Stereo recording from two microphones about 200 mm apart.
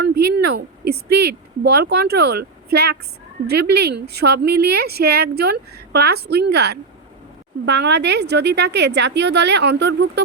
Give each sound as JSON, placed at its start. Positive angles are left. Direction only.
{"t": 0.0, "sound": "a woman's voice", "side_deg": -55}